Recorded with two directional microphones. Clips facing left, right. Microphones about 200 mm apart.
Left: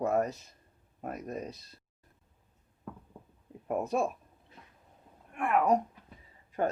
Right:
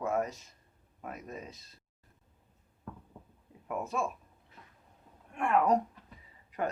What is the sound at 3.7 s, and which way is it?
Speech, 40° left (ahead or behind).